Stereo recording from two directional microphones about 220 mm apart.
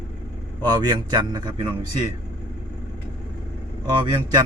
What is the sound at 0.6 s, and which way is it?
Speech, 20° right (ahead or behind).